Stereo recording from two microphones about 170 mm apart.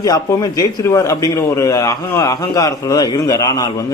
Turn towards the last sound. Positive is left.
turn(degrees=20)  # may be behind; listen again after turning